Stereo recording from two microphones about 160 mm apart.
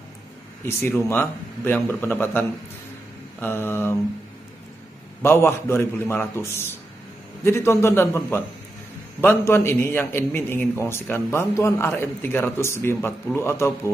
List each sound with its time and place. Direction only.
0.7 s a man's voice: 15° left (ahead or behind)
5.2 s a man's voice: 15° left (ahead or behind)